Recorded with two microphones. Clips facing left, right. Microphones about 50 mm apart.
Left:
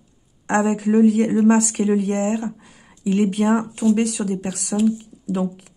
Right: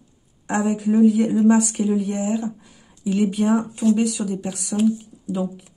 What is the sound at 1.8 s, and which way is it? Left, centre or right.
Speech, left.